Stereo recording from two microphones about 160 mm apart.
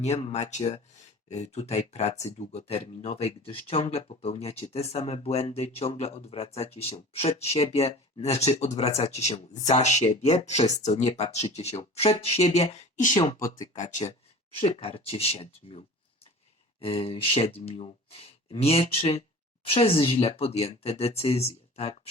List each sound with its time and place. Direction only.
0.0 s speech: 45° left (ahead or behind)
14.6 s speech: 35° left (ahead or behind)
16.8 s speech: 35° left (ahead or behind)